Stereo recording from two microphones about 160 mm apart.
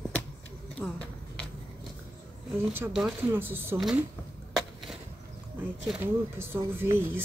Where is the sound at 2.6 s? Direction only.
15° right (ahead or behind).